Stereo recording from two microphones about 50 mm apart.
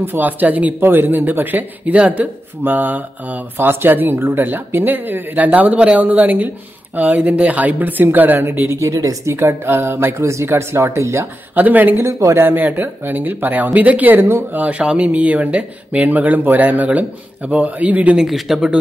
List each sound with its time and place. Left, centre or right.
0.0 s a woman's voice: right
0.8 s a woman's voice: right
8.4 s speech: right
11.5 s a woman's voice: right
12.0 s speech: right
12.4 s a woman's voice: right
18.1 s speech: centre